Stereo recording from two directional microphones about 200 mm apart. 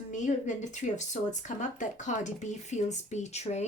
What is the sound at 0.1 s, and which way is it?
Speech, 40° left (ahead or behind).